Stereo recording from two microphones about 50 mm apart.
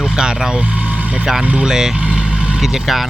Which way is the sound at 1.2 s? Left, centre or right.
Centre.